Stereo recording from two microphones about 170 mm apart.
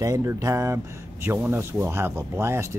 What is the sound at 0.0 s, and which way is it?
Speech, 20° right (ahead or behind).